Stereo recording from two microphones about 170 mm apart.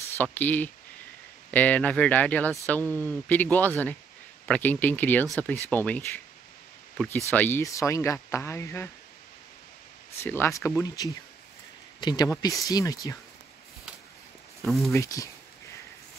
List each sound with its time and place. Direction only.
0.2 s speech: 10° left (ahead or behind)
7.2 s speech: 10° left (ahead or behind)
10.2 s speech: 15° left (ahead or behind)
14.6 s speech: centre (ahead or behind)
15.0 s speech: 20° left (ahead or behind)